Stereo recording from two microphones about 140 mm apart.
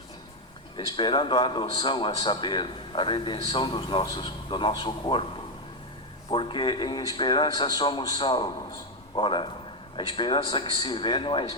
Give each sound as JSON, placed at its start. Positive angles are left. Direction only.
{"t": 0.8, "sound": "speech", "side_deg": 35}
{"t": 6.3, "sound": "speech", "side_deg": 35}